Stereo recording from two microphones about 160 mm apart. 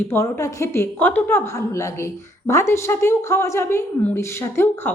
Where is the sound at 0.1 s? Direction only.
15° left (ahead or behind).